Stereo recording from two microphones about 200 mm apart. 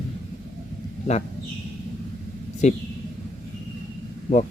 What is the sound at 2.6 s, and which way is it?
Speech, 35° left (ahead or behind).